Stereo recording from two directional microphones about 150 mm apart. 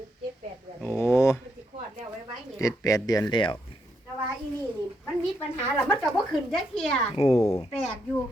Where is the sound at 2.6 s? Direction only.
20° left (ahead or behind).